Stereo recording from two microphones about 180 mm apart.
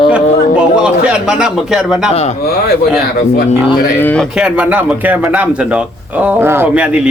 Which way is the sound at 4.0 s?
10° left (ahead or behind).